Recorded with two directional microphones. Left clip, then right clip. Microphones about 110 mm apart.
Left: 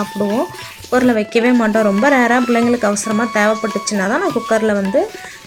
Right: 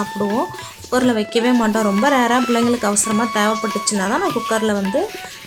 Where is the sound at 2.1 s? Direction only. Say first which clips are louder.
Left 2 dB; 20° left (ahead or behind).